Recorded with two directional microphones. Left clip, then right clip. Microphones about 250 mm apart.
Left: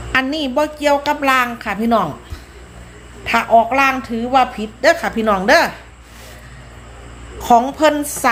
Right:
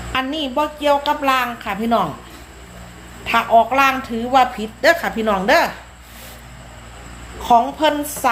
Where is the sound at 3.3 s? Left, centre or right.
Centre.